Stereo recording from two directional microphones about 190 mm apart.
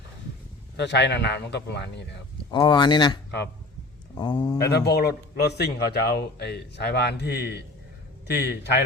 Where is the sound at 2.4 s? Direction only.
25° left (ahead or behind).